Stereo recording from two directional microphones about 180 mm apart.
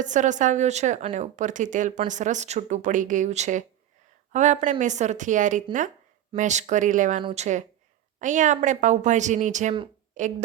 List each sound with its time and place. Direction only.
0.0 s speech: 45° right (ahead or behind)
7.2 s speech: 30° right (ahead or behind)
8.2 s speech: 45° right (ahead or behind)